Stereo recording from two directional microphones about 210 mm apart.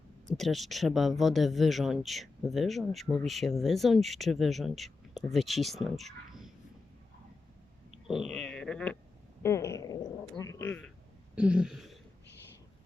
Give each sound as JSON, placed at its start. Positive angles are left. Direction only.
{"t": 0.3, "sound": "speech", "side_deg": 0}
{"t": 8.0, "sound": "a sound", "side_deg": 0}
{"t": 9.4, "sound": "speech", "side_deg": 15}
{"t": 11.3, "sound": "speech", "side_deg": -5}